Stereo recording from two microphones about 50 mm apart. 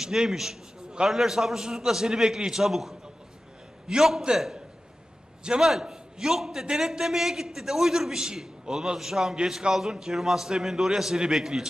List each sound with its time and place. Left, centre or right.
0.0 s a man's voice: centre